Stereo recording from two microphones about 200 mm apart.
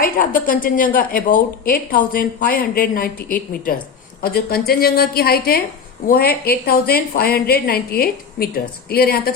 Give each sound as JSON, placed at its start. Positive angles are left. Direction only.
{"t": 0.0, "sound": "a woman's voice", "side_deg": 45}